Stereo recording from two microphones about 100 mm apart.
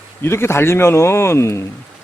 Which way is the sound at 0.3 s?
25° left (ahead or behind).